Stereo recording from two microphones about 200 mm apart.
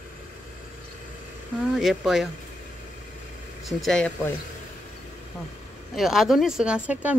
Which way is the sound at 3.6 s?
Centre (ahead or behind).